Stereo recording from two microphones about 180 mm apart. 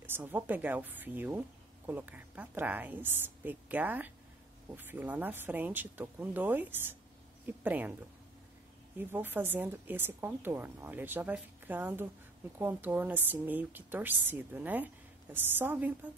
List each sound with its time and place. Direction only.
0.0 s a woman's voice: 10° right (ahead or behind)
8.9 s a woman's voice: 10° right (ahead or behind)